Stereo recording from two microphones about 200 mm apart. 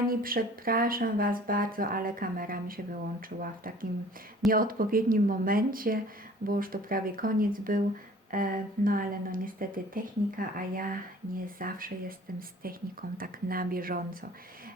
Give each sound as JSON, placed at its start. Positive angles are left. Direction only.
{"t": 0.1, "sound": "speech", "side_deg": -45}